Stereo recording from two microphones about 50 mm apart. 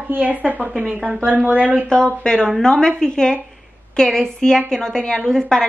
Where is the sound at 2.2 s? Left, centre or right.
Centre.